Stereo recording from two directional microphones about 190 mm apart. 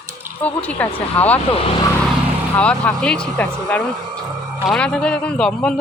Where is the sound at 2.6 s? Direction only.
5° left (ahead or behind).